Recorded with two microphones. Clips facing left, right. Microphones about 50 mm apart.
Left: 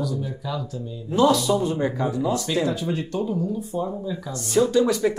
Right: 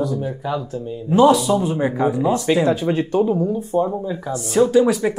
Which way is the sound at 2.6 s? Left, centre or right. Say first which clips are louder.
Right 7 dB; right.